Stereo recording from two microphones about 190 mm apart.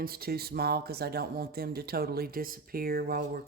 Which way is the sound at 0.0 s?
55° right (ahead or behind).